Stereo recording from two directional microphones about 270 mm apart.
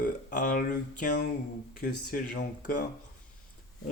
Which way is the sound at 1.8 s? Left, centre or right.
Left.